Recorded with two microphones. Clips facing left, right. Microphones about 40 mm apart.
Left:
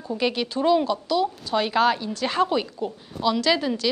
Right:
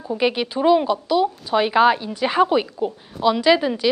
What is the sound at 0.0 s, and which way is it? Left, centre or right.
A woman's voice, centre.